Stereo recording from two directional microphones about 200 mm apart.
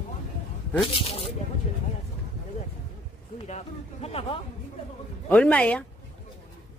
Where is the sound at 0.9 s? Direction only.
30° left (ahead or behind).